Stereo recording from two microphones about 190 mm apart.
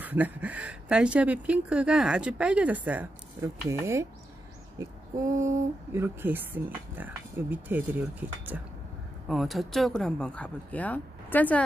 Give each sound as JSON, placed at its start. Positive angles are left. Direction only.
{"t": 0.0, "sound": "speech", "side_deg": -10}